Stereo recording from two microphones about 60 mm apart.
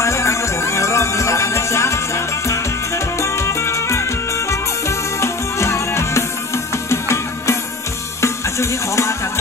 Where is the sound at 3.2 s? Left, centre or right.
Left.